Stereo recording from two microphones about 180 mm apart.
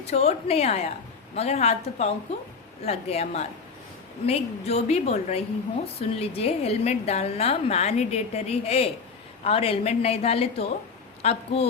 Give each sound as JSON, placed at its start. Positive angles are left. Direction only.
{"t": 0.1, "sound": "a woman's voice", "side_deg": 35}